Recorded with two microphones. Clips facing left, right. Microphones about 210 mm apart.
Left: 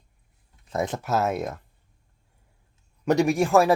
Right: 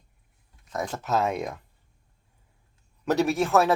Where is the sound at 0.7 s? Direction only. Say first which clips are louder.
Left 4 dB; 20° left (ahead or behind).